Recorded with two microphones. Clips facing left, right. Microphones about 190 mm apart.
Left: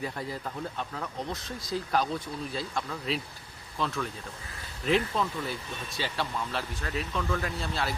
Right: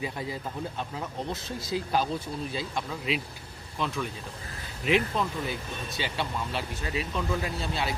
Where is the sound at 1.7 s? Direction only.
15° right (ahead or behind).